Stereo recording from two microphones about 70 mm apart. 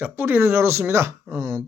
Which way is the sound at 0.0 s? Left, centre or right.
Right.